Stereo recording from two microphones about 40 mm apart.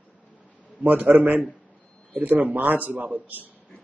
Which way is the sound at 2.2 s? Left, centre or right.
Right.